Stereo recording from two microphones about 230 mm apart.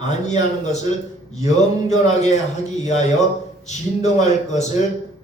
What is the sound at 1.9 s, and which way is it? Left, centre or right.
A man's voice, left.